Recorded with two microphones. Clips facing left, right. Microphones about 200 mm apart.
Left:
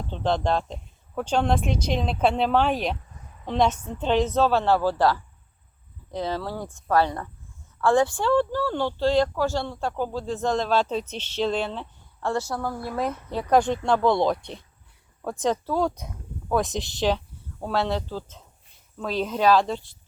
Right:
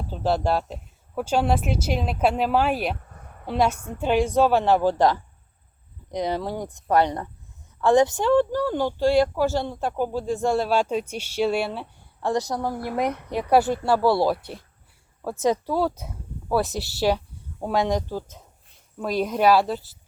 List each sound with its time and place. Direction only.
0.0 s speech: 5° right (ahead or behind)
3.0 s a sound: 60° right (ahead or behind)
3.4 s speech: 10° right (ahead or behind)